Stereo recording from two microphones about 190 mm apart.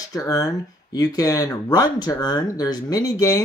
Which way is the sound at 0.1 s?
20° left (ahead or behind).